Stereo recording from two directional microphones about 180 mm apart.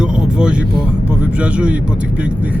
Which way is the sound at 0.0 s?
5° right (ahead or behind).